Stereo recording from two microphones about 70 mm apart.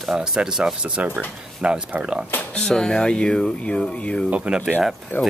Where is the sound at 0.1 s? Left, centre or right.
Centre.